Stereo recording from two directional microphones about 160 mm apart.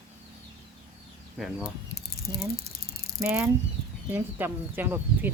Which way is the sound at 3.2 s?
5° right (ahead or behind).